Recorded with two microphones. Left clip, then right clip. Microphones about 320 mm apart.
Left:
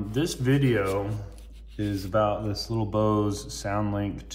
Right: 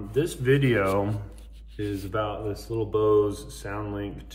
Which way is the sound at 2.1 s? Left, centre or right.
Centre.